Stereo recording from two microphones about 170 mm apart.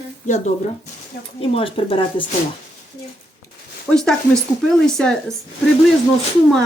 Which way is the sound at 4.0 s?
5° left (ahead or behind).